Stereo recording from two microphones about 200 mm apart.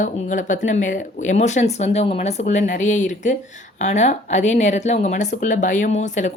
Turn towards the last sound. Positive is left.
turn(degrees=35)  # may be behind; listen again after turning